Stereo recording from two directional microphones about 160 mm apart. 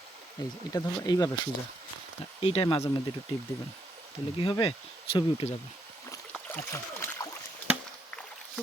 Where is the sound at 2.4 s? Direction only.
35° left (ahead or behind).